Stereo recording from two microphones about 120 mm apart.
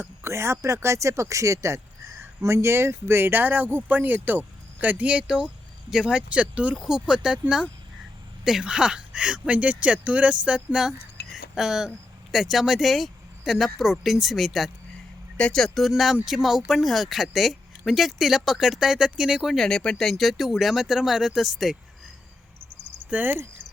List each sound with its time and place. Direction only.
0.0 s speech: 20° right (ahead or behind); by 21.8 s centre (ahead or behind)
23.0 s speech: 15° right (ahead or behind)